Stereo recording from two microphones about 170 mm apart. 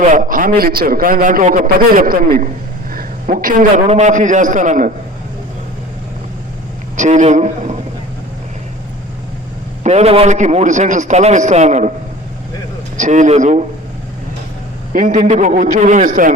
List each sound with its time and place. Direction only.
0.0 s a man's voice: 50° right (ahead or behind)
3.8 s a man's voice: 40° right (ahead or behind)
6.9 s a man's voice: 45° right (ahead or behind)
9.8 s a man's voice: 40° right (ahead or behind)
13.0 s a man's voice: 45° right (ahead or behind)
14.9 s a man's voice: 45° right (ahead or behind)